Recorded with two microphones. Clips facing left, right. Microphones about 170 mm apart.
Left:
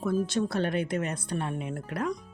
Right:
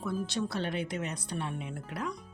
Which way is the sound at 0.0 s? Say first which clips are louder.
Left 6 dB; 45° left (ahead or behind).